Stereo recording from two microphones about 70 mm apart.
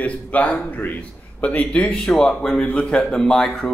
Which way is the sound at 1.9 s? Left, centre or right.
Centre.